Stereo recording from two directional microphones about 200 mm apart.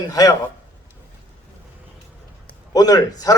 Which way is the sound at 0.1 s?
15° left (ahead or behind).